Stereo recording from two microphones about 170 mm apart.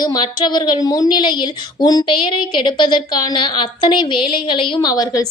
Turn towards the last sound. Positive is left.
turn(degrees=25)  # may be behind; listen again after turning